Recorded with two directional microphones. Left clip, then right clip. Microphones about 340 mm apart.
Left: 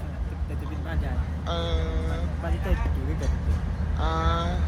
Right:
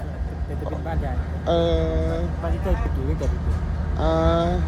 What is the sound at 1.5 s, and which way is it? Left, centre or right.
Speech, centre.